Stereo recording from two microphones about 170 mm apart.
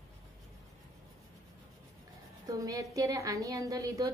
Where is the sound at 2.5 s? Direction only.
20° right (ahead or behind).